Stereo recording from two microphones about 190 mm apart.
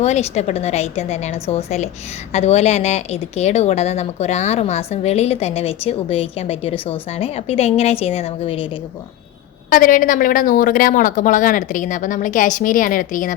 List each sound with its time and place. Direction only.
0.0 s a woman's voice: 35° left (ahead or behind)
9.6 s a woman's voice: 45° left (ahead or behind)